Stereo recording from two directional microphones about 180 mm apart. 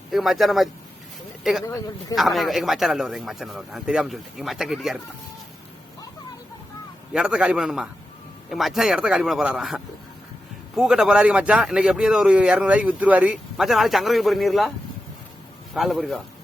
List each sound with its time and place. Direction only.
0.1 s speech: centre (ahead or behind)
1.6 s speech: 20° left (ahead or behind)
2.1 s speech: centre (ahead or behind)
7.1 s speech: 5° right (ahead or behind)
15.7 s speech: centre (ahead or behind)